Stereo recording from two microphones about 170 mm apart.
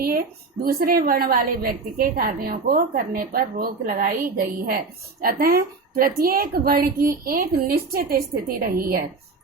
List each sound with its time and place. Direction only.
0.6 s a woman's voice: 60° right (ahead or behind)